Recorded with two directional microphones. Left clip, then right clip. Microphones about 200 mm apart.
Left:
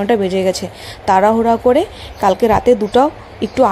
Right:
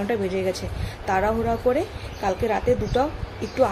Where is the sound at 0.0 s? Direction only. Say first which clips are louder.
Left 10 dB; 40° left (ahead or behind).